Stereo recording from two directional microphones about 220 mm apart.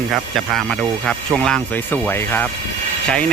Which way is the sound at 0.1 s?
Centre (ahead or behind).